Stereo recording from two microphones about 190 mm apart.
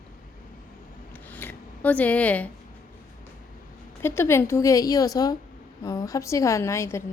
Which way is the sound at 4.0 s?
10° left (ahead or behind).